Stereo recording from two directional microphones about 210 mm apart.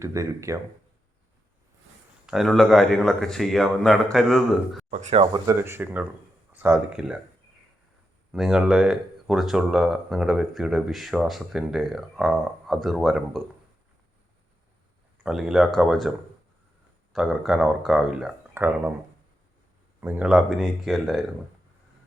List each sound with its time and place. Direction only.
0.0 s speech: 15° right (ahead or behind)
2.2 s speech: centre (ahead or behind)
4.9 s speech: 35° right (ahead or behind); by 7.2 s 5° right (ahead or behind)
8.3 s speech: 5° right (ahead or behind)
15.2 s speech: centre (ahead or behind)
20.0 s speech: 10° right (ahead or behind)